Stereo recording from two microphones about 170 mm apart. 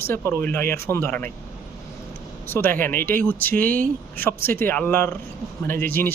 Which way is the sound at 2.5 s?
15° left (ahead or behind).